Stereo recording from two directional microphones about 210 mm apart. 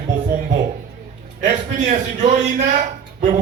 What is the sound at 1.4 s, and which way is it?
A man's voice, 35° right (ahead or behind).